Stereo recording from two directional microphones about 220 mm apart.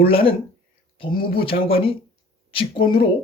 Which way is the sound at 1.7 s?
25° left (ahead or behind).